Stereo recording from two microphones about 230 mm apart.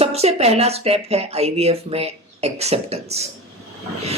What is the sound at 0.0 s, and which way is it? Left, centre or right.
A man's voice, right.